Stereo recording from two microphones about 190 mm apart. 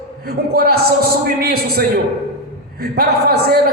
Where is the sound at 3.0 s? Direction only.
55° right (ahead or behind).